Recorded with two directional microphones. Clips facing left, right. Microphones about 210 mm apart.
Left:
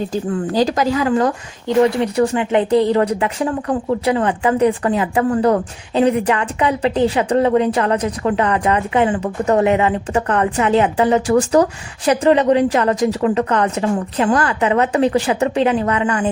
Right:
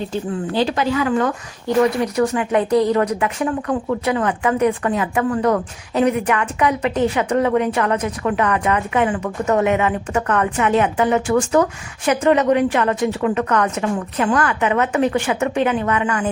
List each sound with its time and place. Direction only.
0.1 s speech: 40° left (ahead or behind)